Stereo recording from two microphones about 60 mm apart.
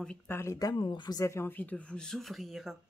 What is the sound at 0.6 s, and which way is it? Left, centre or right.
Speech, left.